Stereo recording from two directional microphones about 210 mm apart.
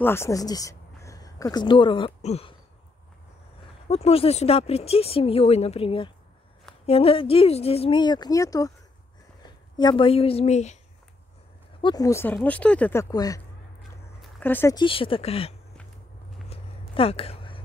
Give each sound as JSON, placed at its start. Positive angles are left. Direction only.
{"t": 0.0, "sound": "speech", "side_deg": 10}
{"t": 3.9, "sound": "speech", "side_deg": 30}
{"t": 9.8, "sound": "speech", "side_deg": 20}
{"t": 11.8, "sound": "speech", "side_deg": 20}
{"t": 14.8, "sound": "speech", "side_deg": 25}
{"t": 16.4, "sound": "a sound", "side_deg": 25}